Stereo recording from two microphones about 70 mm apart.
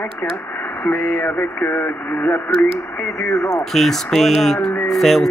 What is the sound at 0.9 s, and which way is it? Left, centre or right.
Speech, centre.